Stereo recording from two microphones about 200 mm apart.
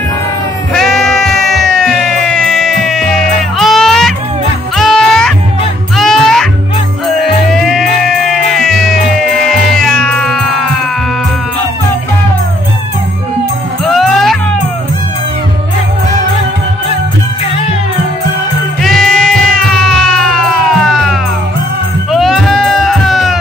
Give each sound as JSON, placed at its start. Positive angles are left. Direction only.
{"t": 0.7, "sound": "sheep", "side_deg": 0}
{"t": 1.5, "sound": "music", "side_deg": 0}
{"t": 13.9, "sound": "music", "side_deg": 0}
{"t": 18.8, "sound": "music", "side_deg": 0}